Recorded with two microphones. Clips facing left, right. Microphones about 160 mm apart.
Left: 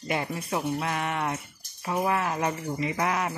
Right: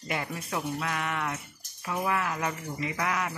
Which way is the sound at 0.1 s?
25° left (ahead or behind).